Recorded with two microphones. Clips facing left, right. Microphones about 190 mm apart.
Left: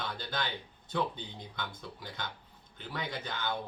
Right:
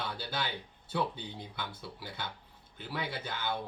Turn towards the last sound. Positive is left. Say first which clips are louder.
# even
turn(degrees=-10)  # may be behind; listen again after turning